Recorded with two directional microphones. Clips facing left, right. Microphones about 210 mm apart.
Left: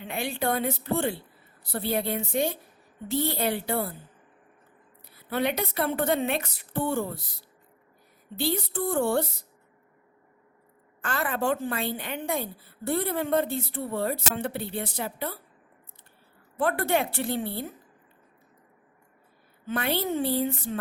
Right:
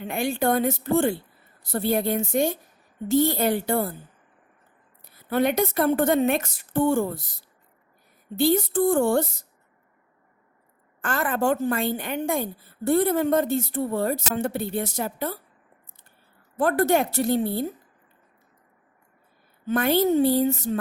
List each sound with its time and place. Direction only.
0.0 s a woman's voice: 45° right (ahead or behind)
5.0 s a woman's voice: 45° right (ahead or behind)
11.0 s a woman's voice: 50° right (ahead or behind)
16.6 s a woman's voice: 45° right (ahead or behind)
19.6 s a woman's voice: 45° right (ahead or behind)